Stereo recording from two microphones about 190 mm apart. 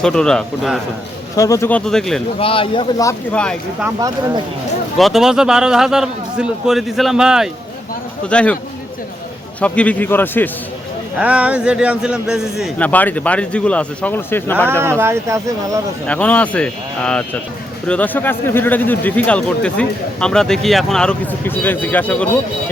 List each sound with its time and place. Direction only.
0.0 s a man's voice: 5° left (ahead or behind)
1.4 s a man's voice: 15° left (ahead or behind)
2.4 s speech: 30° left (ahead or behind)
4.9 s a man's voice: centre (ahead or behind)
9.6 s speech: 5° left (ahead or behind)
11.2 s speech: 5° right (ahead or behind); by 14.7 s 10° left (ahead or behind)
14.7 s speech: 10° right (ahead or behind)
16.0 s speech: 5° left (ahead or behind)